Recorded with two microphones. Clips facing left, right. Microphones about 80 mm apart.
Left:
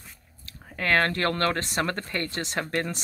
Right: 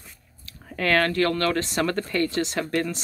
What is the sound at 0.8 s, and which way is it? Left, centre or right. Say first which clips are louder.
Speech: right 3 dB; left.